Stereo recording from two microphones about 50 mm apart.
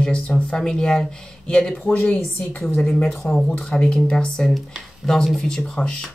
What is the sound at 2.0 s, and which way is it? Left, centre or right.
Speech, left.